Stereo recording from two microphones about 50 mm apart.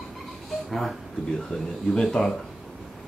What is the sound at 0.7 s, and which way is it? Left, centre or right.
Speech, centre.